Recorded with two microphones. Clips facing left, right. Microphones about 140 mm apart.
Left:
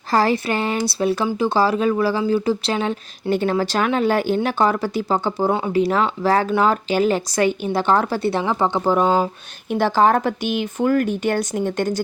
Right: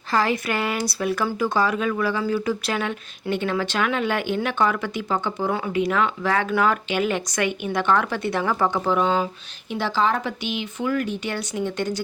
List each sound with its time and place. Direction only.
0.1 s speech: 35° left (ahead or behind)